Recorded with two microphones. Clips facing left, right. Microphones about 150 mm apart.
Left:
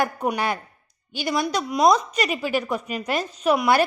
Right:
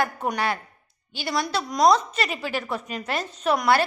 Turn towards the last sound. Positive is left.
turn(degrees=10)  # may be behind; listen again after turning